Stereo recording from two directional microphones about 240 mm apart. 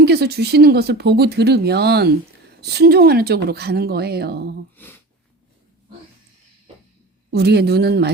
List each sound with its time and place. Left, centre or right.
0.0 s speech: right
4.8 s a sound: centre
7.3 s speech: right